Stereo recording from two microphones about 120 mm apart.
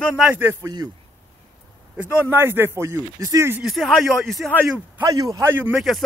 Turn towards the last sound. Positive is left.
turn(degrees=0)  # may be behind; listen again after turning